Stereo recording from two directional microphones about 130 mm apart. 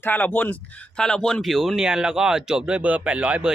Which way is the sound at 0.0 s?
15° left (ahead or behind).